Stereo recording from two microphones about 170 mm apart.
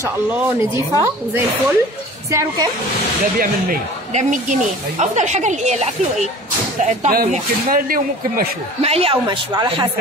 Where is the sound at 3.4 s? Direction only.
50° right (ahead or behind).